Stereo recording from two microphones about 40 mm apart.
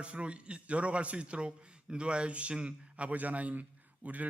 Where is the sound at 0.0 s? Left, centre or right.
Right.